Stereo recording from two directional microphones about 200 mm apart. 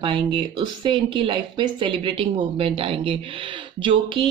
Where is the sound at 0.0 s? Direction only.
25° right (ahead or behind).